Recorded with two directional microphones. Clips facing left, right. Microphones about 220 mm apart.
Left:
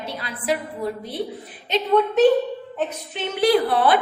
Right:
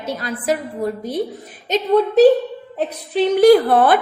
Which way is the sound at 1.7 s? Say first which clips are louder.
Right 4 dB; 35° right (ahead or behind).